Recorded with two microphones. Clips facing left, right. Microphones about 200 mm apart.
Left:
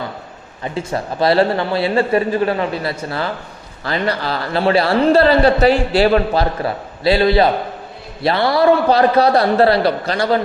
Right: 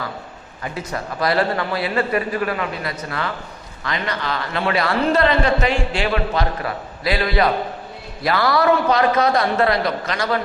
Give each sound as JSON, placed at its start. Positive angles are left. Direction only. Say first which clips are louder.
{"t": 0.6, "sound": "a man's voice", "louder": "left 5 dB", "side_deg": 25}